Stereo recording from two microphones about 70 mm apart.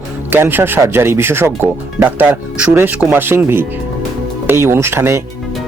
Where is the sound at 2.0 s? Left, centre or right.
Right.